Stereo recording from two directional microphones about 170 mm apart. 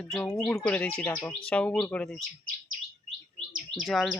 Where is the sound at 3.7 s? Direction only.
Centre (ahead or behind).